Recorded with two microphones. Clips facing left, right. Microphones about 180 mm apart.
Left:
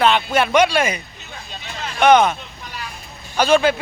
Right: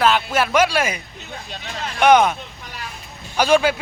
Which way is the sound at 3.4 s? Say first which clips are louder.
Left 1 dB; 10° right (ahead or behind).